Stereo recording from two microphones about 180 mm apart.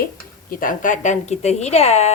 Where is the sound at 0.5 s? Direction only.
50° left (ahead or behind).